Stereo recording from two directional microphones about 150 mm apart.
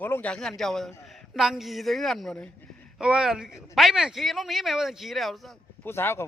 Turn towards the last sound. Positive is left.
turn(degrees=15)  # may be behind; listen again after turning